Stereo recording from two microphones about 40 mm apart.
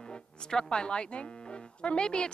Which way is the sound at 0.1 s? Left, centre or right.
Centre.